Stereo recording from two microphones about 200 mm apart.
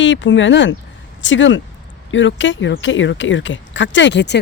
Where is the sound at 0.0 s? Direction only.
65° left (ahead or behind).